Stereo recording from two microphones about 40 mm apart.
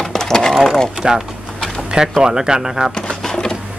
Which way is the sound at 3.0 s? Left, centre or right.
Centre.